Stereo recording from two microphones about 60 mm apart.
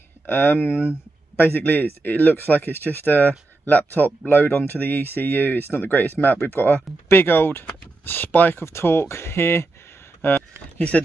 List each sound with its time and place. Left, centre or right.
0.3 s speech: left
8.6 s speech: left